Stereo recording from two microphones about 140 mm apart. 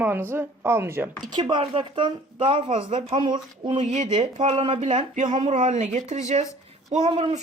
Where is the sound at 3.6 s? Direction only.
55° right (ahead or behind).